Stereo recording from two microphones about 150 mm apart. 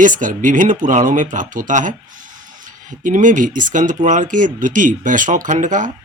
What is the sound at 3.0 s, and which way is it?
Speech, 60° right (ahead or behind).